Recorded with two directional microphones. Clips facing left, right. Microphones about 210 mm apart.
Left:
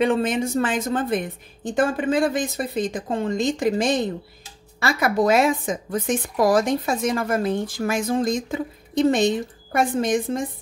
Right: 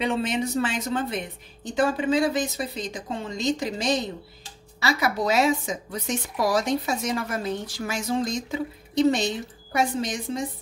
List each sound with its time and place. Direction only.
0.0 s a woman's voice: 50° left (ahead or behind)